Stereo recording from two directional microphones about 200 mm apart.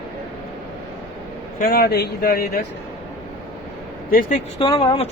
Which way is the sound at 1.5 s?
50° left (ahead or behind).